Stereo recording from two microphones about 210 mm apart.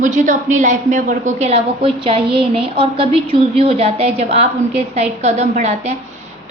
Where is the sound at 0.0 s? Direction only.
35° right (ahead or behind).